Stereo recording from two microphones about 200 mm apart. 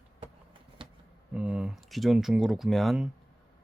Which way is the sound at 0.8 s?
25° right (ahead or behind).